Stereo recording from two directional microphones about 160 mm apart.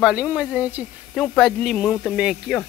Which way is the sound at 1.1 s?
Centre (ahead or behind).